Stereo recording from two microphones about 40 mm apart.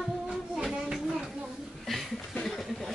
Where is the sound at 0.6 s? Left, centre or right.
Centre.